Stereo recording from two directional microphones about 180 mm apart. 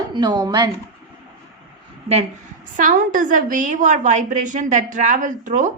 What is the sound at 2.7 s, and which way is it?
A woman's voice, 45° right (ahead or behind).